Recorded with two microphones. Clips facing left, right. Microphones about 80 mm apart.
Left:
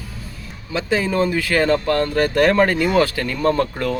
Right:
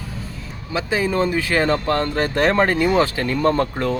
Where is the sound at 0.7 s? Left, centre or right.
Centre.